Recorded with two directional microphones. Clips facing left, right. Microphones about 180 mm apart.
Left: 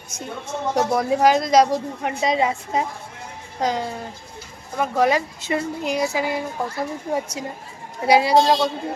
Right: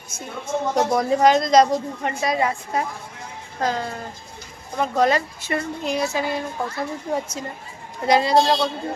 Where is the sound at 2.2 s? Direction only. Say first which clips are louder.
Left 2 dB; 20° left (ahead or behind).